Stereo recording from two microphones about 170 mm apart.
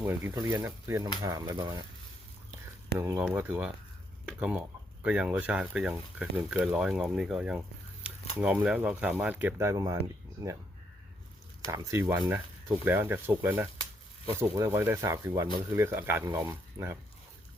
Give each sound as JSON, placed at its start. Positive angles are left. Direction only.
{"t": 0.0, "sound": "speech", "side_deg": -15}
{"t": 3.0, "sound": "speech", "side_deg": -10}
{"t": 11.7, "sound": "speech", "side_deg": -20}